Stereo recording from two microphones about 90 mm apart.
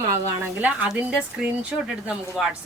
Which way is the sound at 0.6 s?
15° right (ahead or behind).